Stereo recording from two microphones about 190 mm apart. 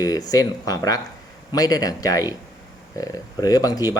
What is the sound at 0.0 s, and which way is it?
Speech, 20° left (ahead or behind).